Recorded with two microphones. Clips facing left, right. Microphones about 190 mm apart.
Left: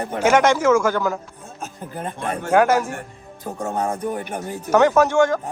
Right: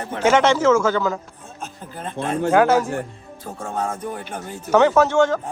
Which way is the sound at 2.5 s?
10° left (ahead or behind).